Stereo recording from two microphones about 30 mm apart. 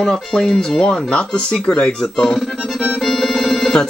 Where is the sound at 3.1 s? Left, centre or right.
Centre.